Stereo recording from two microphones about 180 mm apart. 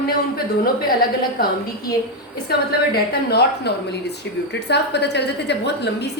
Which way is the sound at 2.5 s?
65° left (ahead or behind).